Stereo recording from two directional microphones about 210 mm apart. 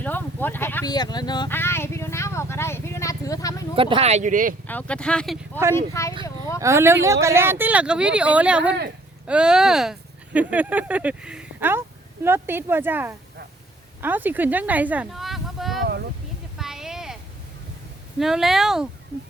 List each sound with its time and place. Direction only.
0.0 s speech: 10° left (ahead or behind)
3.8 s speech: 25° right (ahead or behind)
4.6 s speech: 5° left (ahead or behind)
5.7 s speech: 15° left (ahead or behind)
6.6 s speech: 15° right (ahead or behind)
16.6 s a sound: centre (ahead or behind)
18.2 s speech: centre (ahead or behind)